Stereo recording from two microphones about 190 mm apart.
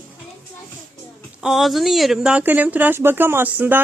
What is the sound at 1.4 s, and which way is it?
Speech, centre (ahead or behind).